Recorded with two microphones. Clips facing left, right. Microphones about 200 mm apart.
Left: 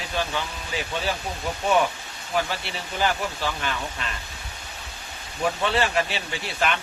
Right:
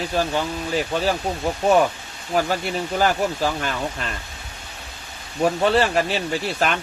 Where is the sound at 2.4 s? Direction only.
45° right (ahead or behind).